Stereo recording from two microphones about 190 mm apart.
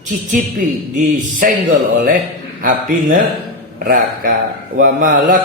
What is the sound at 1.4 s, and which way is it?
Speech, 45° right (ahead or behind).